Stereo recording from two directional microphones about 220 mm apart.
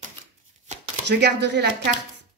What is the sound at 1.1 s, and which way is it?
Speech, 50° right (ahead or behind).